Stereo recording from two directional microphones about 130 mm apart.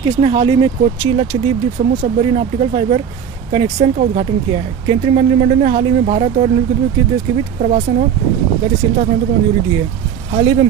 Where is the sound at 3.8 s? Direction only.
65° right (ahead or behind).